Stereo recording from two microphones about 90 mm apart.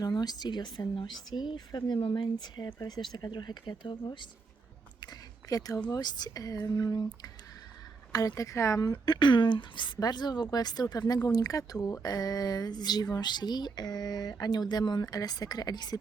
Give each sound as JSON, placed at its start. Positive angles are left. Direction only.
{"t": 0.0, "sound": "speech", "side_deg": 50}
{"t": 2.0, "sound": "speech", "side_deg": 90}
{"t": 2.4, "sound": "speech", "side_deg": 55}
{"t": 5.5, "sound": "speech", "side_deg": 40}
{"t": 9.0, "sound": "speech", "side_deg": 55}